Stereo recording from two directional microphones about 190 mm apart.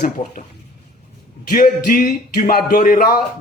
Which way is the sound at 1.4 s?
50° left (ahead or behind).